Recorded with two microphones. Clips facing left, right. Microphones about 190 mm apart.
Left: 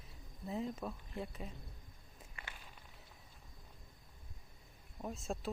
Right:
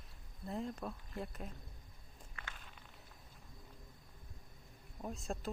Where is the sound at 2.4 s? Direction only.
10° left (ahead or behind).